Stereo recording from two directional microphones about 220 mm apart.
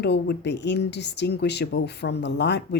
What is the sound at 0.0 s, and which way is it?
Speech, 50° left (ahead or behind).